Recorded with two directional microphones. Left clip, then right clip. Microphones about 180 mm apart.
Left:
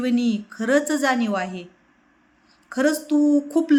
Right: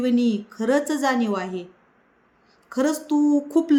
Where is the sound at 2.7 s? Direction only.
15° right (ahead or behind).